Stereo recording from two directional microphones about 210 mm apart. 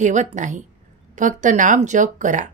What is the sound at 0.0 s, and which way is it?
A woman's voice, 35° right (ahead or behind).